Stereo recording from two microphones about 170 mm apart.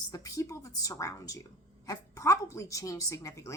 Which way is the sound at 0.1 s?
20° left (ahead or behind).